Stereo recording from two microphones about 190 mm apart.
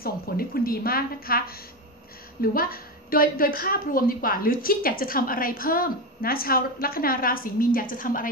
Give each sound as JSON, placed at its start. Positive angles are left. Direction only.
{"t": 0.0, "sound": "a woman's voice", "side_deg": 50}